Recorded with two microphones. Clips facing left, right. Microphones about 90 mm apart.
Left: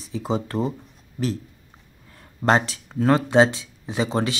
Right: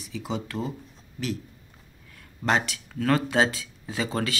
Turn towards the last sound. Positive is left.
turn(degrees=25)  # may be behind; listen again after turning